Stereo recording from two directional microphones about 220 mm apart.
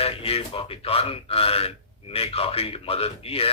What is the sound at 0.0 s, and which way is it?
Speech, 25° left (ahead or behind).